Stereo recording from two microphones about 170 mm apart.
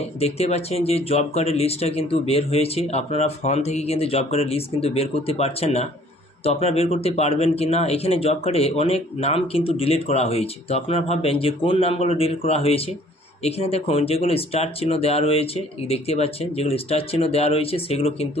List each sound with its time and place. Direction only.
0.2 s speech: 40° left (ahead or behind)